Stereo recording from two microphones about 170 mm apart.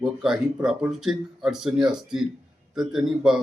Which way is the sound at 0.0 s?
5° right (ahead or behind).